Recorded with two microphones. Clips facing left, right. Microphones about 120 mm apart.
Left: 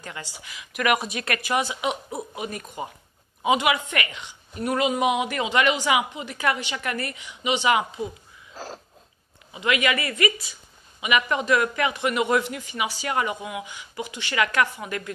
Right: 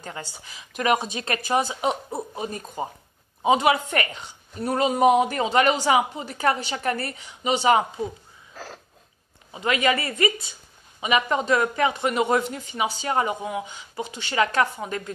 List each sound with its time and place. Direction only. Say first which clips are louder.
0.0 s a woman's voice: right 2 dB; 35° right (ahead or behind)
8.5 s a sound: left 2 dB; 25° left (ahead or behind)
9.5 s a woman's voice: right 1 dB; 35° right (ahead or behind)